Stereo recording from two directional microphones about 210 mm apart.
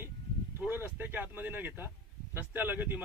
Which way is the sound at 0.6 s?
10° right (ahead or behind).